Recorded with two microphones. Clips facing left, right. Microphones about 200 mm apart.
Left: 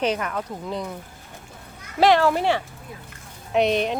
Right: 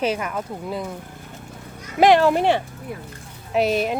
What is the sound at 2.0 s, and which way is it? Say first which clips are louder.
Speech: right 3 dB; 15° right (ahead or behind).